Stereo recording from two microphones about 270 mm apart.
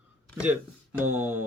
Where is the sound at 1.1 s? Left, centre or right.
Centre.